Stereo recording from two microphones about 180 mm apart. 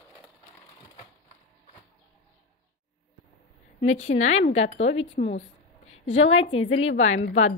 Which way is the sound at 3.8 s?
40° left (ahead or behind).